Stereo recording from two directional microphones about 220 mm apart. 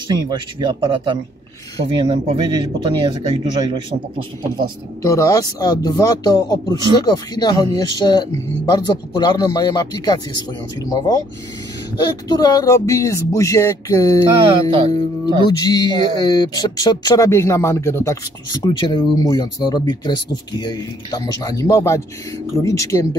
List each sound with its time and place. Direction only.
0.1 s speech: 20° right (ahead or behind)
5.0 s speech: 15° left (ahead or behind)
14.4 s speech: 25° right (ahead or behind)
15.6 s speech: 15° left (ahead or behind)